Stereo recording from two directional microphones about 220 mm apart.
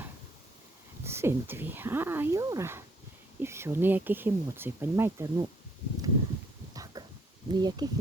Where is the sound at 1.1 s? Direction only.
10° right (ahead or behind).